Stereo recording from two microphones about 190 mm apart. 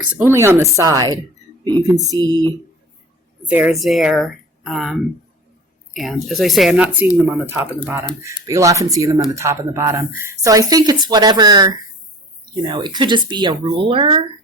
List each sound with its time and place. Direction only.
0.1 s speech: 10° right (ahead or behind)
3.4 s speech: 5° right (ahead or behind); by 14.3 s 25° right (ahead or behind)